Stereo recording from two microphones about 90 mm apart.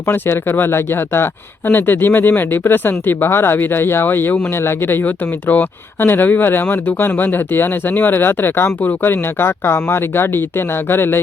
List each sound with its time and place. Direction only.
0.0 s speech: 25° left (ahead or behind)